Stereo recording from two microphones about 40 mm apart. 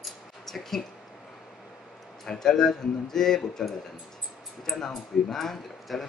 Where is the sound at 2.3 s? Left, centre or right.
Centre.